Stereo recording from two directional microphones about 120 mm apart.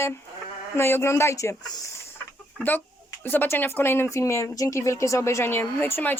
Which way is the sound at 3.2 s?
15° left (ahead or behind).